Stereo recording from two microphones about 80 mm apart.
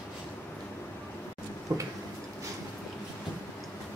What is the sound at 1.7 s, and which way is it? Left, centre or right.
Tick-tock, right.